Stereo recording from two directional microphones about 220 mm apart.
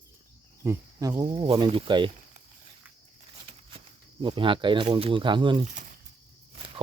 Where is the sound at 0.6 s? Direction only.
15° right (ahead or behind).